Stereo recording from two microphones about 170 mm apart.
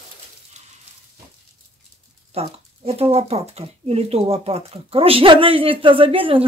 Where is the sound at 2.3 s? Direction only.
35° right (ahead or behind).